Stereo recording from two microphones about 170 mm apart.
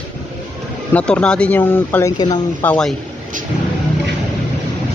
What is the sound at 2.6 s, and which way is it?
Speech, 5° left (ahead or behind).